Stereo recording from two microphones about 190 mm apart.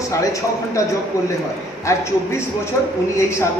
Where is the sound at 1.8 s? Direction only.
15° left (ahead or behind).